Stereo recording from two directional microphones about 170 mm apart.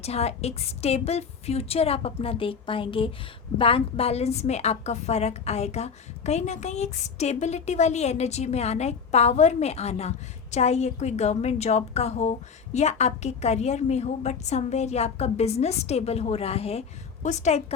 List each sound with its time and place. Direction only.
0.0 s a woman's voice: 40° left (ahead or behind)